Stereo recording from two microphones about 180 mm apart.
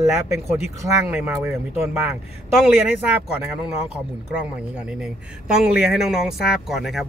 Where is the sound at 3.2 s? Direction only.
10° right (ahead or behind).